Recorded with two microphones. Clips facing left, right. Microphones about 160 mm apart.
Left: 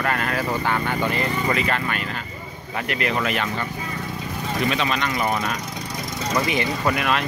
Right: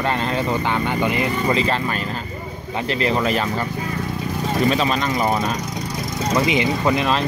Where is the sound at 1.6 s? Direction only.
30° right (ahead or behind).